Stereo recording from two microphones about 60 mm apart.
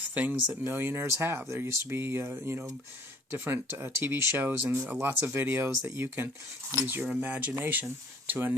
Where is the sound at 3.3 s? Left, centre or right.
Right.